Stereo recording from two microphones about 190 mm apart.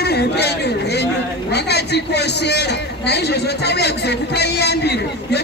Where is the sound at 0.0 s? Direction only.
60° left (ahead or behind).